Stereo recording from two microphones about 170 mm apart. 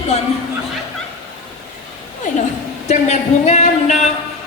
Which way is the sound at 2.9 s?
45° left (ahead or behind).